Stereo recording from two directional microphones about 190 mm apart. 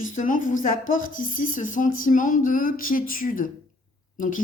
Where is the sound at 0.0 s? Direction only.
45° left (ahead or behind).